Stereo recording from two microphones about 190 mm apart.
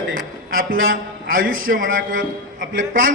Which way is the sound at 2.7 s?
90° right.